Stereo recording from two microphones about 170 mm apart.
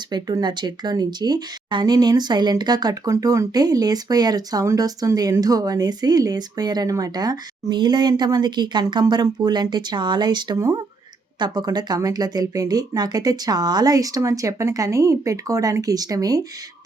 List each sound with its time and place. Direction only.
0.1 s speech: 25° right (ahead or behind)